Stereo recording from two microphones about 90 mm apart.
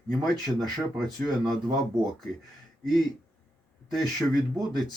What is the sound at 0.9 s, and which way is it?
Speech, 5° left (ahead or behind).